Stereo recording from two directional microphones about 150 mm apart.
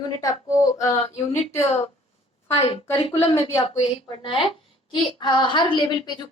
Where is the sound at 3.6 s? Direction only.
40° left (ahead or behind).